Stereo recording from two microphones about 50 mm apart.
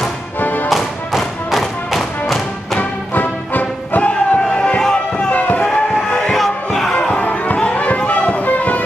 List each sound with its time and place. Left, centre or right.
0.4 s music: left
0.7 s music: centre
2.8 s music: left
5.5 s a sound: left
6.3 s music: centre
7.0 s music: left